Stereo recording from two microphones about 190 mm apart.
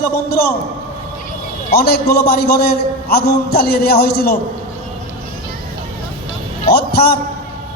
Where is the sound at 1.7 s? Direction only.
55° left (ahead or behind).